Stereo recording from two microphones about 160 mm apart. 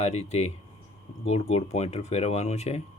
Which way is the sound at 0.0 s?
40° left (ahead or behind).